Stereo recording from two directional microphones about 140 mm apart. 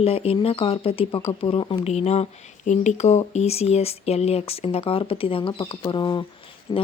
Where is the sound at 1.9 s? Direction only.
50° left (ahead or behind); by 6.8 s 35° left (ahead or behind).